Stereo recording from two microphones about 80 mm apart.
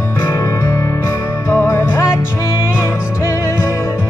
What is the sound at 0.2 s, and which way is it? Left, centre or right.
Music, left.